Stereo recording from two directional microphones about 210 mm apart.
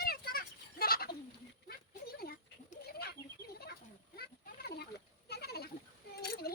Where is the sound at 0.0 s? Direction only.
45° left (ahead or behind).